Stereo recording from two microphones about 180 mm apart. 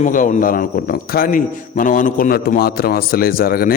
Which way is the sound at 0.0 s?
45° left (ahead or behind).